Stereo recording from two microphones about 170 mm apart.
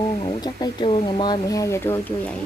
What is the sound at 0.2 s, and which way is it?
A woman's voice, 25° left (ahead or behind).